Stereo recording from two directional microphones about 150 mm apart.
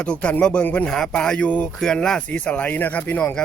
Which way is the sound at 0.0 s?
10° left (ahead or behind).